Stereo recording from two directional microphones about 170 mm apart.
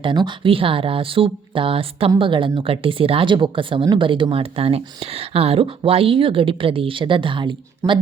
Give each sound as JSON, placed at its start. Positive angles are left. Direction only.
{"t": 0.0, "sound": "speech", "side_deg": -30}
{"t": 7.8, "sound": "speech", "side_deg": -15}